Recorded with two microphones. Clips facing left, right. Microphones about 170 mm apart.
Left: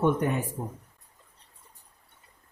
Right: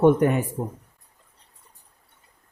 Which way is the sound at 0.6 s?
40° right (ahead or behind).